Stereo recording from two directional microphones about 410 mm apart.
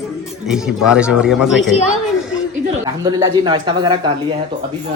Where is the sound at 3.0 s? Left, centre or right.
Centre.